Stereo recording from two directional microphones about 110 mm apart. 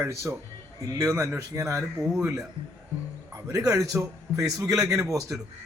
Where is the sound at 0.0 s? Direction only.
25° right (ahead or behind).